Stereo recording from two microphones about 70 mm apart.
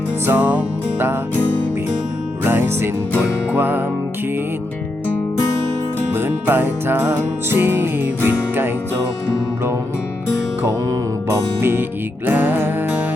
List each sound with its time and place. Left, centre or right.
0.3 s music: right
2.4 s music: right
6.1 s music: right
11.3 s music: right